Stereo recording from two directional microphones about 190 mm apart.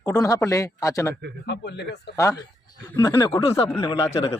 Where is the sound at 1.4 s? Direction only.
65° left (ahead or behind).